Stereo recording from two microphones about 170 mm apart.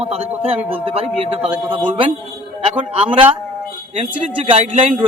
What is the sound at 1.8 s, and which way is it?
Speech, 30° right (ahead or behind).